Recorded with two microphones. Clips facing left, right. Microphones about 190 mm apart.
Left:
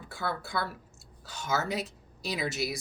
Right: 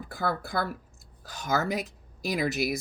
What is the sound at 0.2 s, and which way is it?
Speech, 50° right (ahead or behind).